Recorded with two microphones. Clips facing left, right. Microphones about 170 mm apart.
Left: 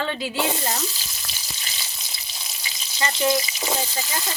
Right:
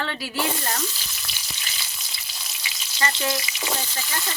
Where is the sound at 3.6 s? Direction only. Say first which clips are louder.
Left 3 dB; 20° left (ahead or behind).